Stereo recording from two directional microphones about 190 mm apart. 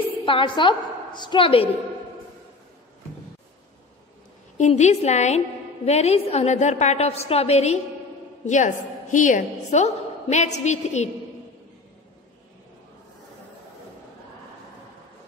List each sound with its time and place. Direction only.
0.2 s a woman's voice: 25° left (ahead or behind)
4.6 s a woman's voice: 35° left (ahead or behind)